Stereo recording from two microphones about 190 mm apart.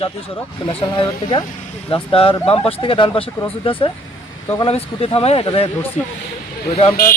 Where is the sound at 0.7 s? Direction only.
30° left (ahead or behind).